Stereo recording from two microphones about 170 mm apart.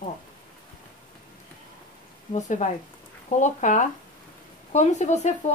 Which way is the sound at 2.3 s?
45° left (ahead or behind).